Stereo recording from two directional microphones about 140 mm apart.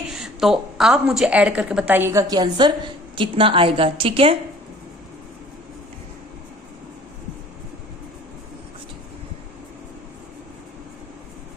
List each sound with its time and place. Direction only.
0.1 s a woman's voice: 5° right (ahead or behind); by 4.4 s 40° right (ahead or behind)